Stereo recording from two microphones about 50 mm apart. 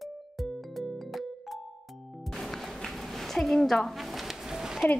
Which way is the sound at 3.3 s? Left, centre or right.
Centre.